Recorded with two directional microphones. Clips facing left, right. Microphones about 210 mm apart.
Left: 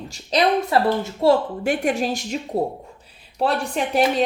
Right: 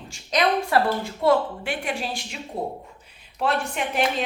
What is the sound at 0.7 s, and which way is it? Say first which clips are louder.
Speech: left 3 dB; 25° left (ahead or behind).